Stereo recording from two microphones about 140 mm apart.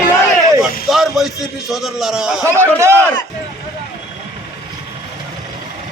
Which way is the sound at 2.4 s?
20° right (ahead or behind).